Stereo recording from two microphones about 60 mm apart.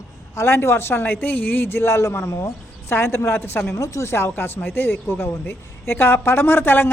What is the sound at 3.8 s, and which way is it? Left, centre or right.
A man's voice, left.